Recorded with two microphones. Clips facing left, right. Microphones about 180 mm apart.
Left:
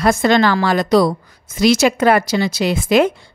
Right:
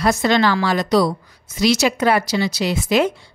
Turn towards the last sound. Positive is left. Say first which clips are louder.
# left 3 dB
turn(degrees=55)  # may be behind; listen again after turning